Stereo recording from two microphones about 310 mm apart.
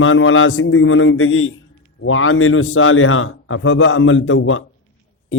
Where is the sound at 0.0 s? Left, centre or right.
Left.